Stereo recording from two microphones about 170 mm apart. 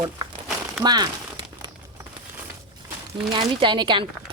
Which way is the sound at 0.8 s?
25° right (ahead or behind).